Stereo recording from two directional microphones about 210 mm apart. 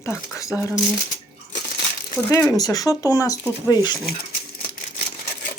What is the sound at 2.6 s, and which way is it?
Speech, 15° left (ahead or behind).